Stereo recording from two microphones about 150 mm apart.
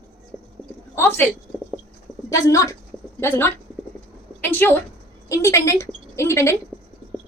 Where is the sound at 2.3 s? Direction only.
20° left (ahead or behind).